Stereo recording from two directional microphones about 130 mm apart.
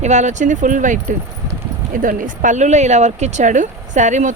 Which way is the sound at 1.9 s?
90° right.